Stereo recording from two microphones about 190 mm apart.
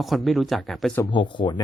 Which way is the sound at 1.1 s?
25° left (ahead or behind).